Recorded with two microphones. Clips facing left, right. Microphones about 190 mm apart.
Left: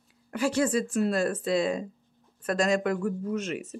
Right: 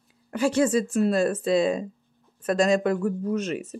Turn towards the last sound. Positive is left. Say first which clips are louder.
# right 4 dB
turn(degrees=-35)  # may be behind; listen again after turning